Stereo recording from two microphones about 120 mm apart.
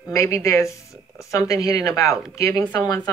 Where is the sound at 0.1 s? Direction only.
25° left (ahead or behind).